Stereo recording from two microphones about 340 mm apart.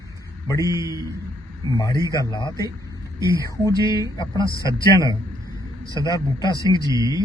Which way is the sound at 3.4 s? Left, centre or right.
Centre.